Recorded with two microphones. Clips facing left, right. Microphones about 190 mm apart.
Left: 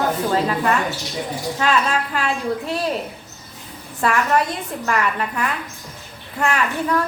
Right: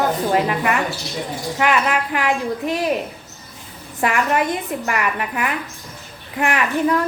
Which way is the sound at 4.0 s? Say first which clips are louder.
Even; 20° right (ahead or behind).